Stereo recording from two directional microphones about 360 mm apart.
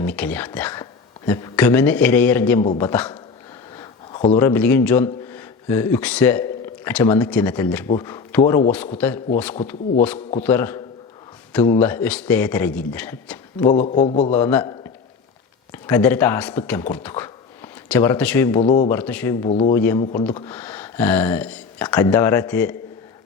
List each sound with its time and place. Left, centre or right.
0.0 s a man's voice: centre
13.7 s a man's voice: centre
14.3 s speech: centre
15.7 s speech: centre
18.6 s a man's voice: centre
18.9 s speech: centre
19.5 s a man's voice: centre
19.7 s speech: centre